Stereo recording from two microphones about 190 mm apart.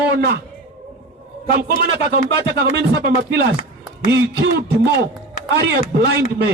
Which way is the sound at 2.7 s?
65° right (ahead or behind).